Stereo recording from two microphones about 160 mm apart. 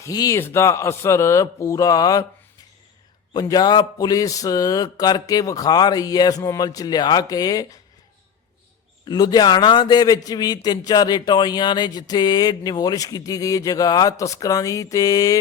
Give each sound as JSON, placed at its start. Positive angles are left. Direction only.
{"t": 0.0, "sound": "a man's voice", "side_deg": 20}
{"t": 9.0, "sound": "a man's voice", "side_deg": 25}